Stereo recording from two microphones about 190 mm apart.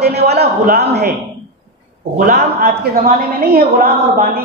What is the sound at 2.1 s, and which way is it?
A woman's voice, 45° right (ahead or behind).